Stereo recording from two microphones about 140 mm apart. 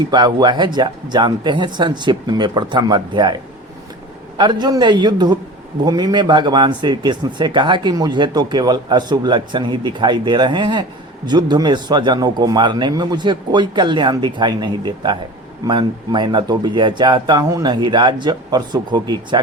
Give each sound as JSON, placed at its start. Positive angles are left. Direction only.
{"t": 0.0, "sound": "speech", "side_deg": -30}
{"t": 4.4, "sound": "speech", "side_deg": -30}